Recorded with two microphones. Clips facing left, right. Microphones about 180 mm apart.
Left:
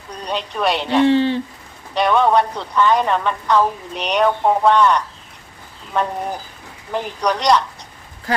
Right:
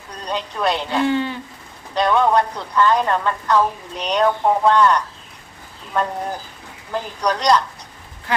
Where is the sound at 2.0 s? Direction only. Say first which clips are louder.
Left 1 dB; 15° left (ahead or behind).